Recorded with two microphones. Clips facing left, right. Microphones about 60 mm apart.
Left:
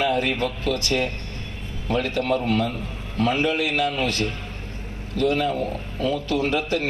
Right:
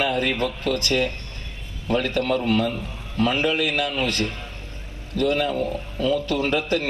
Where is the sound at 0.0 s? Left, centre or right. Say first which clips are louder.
Even; right.